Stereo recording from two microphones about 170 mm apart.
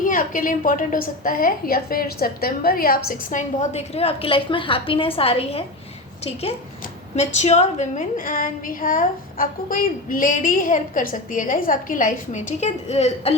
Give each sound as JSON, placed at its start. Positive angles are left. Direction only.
{"t": 0.0, "sound": "a woman's voice", "side_deg": 50}
{"t": 7.2, "sound": "a woman's voice", "side_deg": 40}